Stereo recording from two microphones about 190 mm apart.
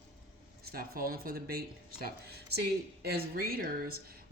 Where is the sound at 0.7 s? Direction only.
50° right (ahead or behind).